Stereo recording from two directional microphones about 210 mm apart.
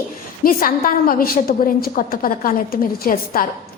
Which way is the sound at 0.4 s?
45° left (ahead or behind).